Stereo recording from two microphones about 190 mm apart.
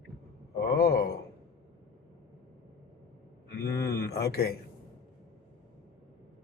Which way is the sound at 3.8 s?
55° left (ahead or behind).